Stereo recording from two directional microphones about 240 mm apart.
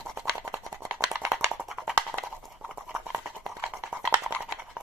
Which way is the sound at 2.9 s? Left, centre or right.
Centre.